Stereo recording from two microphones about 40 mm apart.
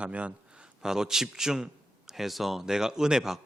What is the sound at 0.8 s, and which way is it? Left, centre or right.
A man's voice, centre.